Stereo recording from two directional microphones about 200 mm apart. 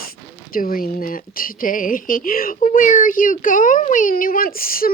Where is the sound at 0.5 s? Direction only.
45° left (ahead or behind).